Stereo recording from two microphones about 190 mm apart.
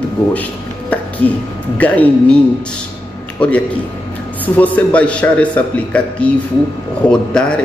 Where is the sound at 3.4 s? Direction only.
5° left (ahead or behind).